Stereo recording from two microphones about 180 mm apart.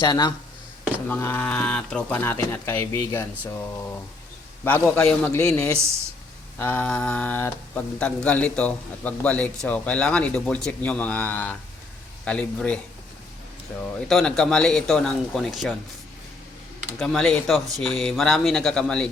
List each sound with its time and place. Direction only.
0.0 s speech: 25° left (ahead or behind)
1.0 s speech: 10° left (ahead or behind)
4.6 s speech: 10° left (ahead or behind)
14.1 s speech: 5° left (ahead or behind)
17.0 s speech: 5° left (ahead or behind)